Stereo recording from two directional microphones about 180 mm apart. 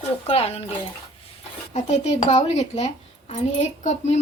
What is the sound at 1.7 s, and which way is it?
A woman's voice, 35° left (ahead or behind).